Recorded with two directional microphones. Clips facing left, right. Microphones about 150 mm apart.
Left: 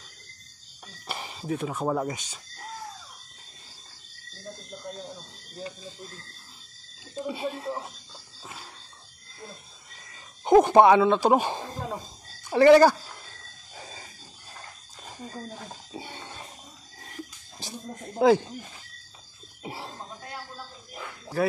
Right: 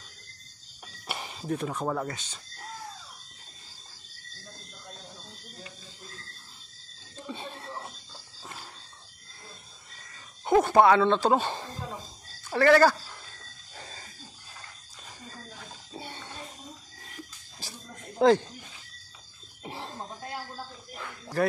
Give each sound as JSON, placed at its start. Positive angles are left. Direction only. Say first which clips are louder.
{"t": 1.0, "sound": "speech", "louder": "left 1 dB", "side_deg": 0}
{"t": 7.2, "sound": "speech", "louder": "left 7 dB", "side_deg": 10}
{"t": 8.4, "sound": "a sound", "louder": "left 1 dB", "side_deg": 0}
{"t": 10.4, "sound": "speech", "louder": "left 4 dB", "side_deg": 20}
{"t": 13.7, "sound": "a sound", "louder": "left 2 dB", "side_deg": 10}
{"t": 15.9, "sound": "a sound", "louder": "even", "side_deg": 15}
{"t": 17.6, "sound": "speech", "louder": "left 5 dB", "side_deg": 20}
{"t": 18.2, "sound": "speech", "louder": "left 1 dB", "side_deg": 5}
{"t": 19.6, "sound": "cough", "louder": "left 1 dB", "side_deg": 10}
{"t": 21.4, "sound": "speech", "louder": "left 1 dB", "side_deg": 0}